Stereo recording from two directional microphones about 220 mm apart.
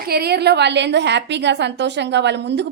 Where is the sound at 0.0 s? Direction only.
45° right (ahead or behind).